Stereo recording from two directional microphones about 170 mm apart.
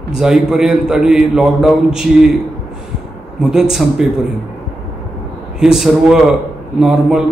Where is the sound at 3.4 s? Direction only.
Centre (ahead or behind).